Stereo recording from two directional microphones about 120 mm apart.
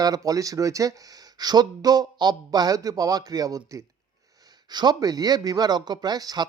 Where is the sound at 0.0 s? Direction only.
30° right (ahead or behind).